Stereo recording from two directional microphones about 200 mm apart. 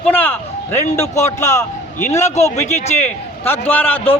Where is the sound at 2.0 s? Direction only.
35° left (ahead or behind).